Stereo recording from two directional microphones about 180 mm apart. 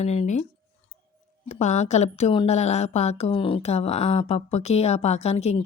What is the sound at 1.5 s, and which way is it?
Speech, 40° left (ahead or behind).